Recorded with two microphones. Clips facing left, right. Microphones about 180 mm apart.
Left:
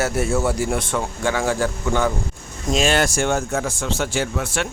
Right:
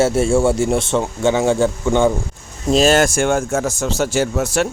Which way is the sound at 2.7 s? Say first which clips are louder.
Right 6 dB; 40° right (ahead or behind).